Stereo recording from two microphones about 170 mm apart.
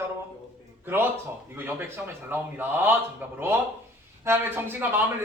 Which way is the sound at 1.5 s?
10° right (ahead or behind).